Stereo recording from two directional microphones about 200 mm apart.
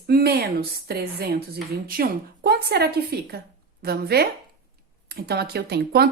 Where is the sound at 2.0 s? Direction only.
50° right (ahead or behind).